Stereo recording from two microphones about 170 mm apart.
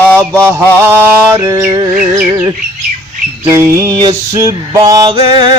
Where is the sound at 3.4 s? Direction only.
15° right (ahead or behind).